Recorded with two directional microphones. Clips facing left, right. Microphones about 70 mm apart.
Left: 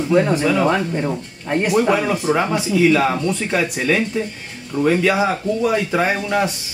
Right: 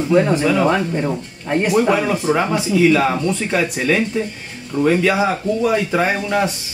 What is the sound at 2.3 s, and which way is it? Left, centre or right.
Speech, centre.